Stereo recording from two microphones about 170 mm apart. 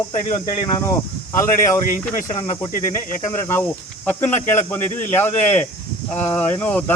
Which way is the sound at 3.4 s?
15° left (ahead or behind).